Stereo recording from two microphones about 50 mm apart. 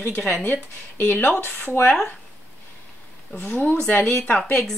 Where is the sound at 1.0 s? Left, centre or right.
Left.